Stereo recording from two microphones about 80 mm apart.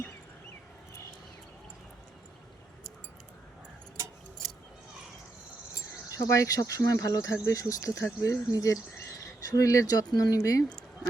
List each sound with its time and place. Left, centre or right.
6.1 s speech: left